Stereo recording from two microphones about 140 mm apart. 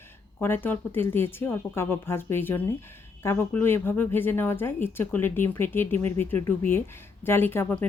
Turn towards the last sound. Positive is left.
turn(degrees=15)  # may be behind; listen again after turning